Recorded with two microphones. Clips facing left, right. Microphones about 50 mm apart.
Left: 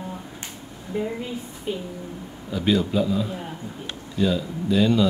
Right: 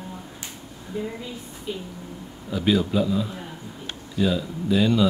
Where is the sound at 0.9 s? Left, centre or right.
Left.